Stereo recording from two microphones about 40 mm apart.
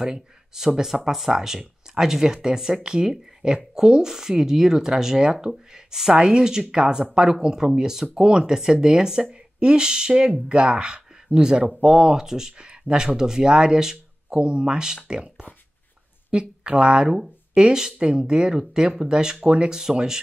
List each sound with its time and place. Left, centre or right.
0.0 s speech: centre
19.4 s speech: right
19.7 s speech: centre